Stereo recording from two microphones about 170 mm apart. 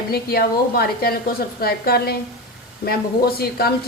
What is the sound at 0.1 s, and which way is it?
A woman's voice, 65° left (ahead or behind).